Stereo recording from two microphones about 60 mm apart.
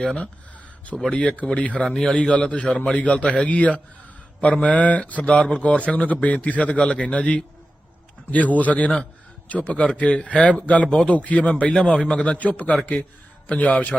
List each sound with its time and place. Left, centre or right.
0.0 s a man's voice: centre
1.1 s a man's voice: centre